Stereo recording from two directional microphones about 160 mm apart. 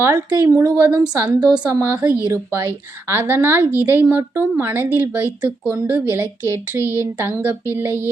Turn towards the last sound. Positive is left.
turn(degrees=-15)  # may be behind; listen again after turning